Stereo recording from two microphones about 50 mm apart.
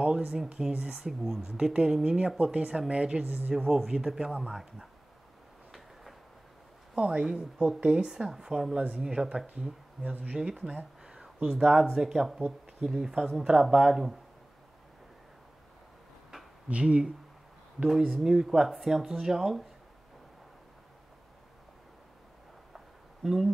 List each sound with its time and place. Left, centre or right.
0.5 s speech: centre
3.3 s speech: right
3.5 s speech: centre
7.0 s speech: centre
10.4 s speech: centre
16.6 s speech: right
17.8 s speech: centre
23.2 s speech: centre